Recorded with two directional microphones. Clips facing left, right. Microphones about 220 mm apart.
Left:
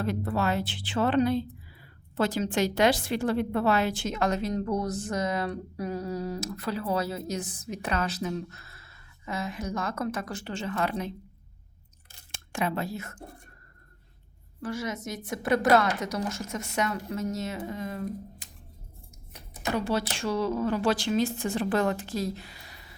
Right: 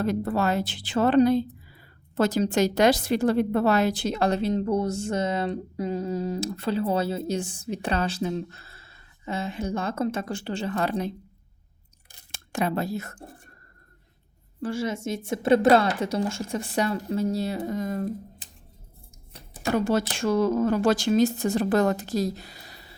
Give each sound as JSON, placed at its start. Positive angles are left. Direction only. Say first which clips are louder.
{"t": 0.0, "sound": "a woman's voice", "louder": "right 4 dB", "side_deg": -40}
{"t": 12.3, "sound": "speech", "louder": "right 4 dB", "side_deg": -35}
{"t": 14.6, "sound": "a woman's voice", "louder": "right 5 dB", "side_deg": -30}
{"t": 19.3, "sound": "a sound", "louder": "right 4 dB", "side_deg": -30}
{"t": 19.7, "sound": "a woman's voice", "louder": "right 5 dB", "side_deg": -45}